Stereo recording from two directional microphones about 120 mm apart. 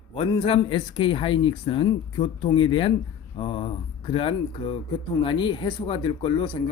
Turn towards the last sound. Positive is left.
turn(degrees=45)  # may be behind; listen again after turning